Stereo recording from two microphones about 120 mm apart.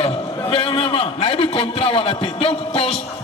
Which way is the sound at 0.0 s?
50° left (ahead or behind).